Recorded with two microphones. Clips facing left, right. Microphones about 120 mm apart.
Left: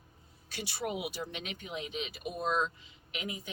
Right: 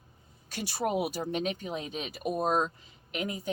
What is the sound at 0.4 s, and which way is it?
Speech, 45° right (ahead or behind).